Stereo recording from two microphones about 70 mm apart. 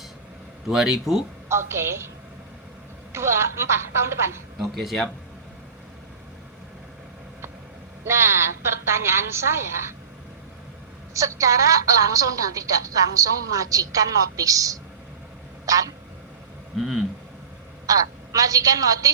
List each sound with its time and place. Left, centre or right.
0.7 s speech: centre
1.5 s a woman's voice: right
3.1 s a woman's voice: right
4.6 s speech: centre
8.0 s a woman's voice: right
11.1 s a woman's voice: right
15.6 s a sound: right
16.7 s speech: centre
17.8 s a woman's voice: right